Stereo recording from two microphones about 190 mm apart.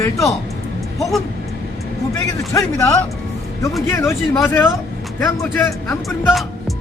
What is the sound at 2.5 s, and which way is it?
Speech, 15° left (ahead or behind).